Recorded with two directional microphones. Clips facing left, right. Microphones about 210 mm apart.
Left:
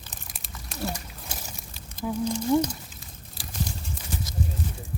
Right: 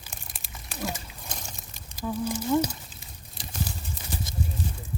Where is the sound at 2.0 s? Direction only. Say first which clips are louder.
Left 2 dB; 10° left (ahead or behind).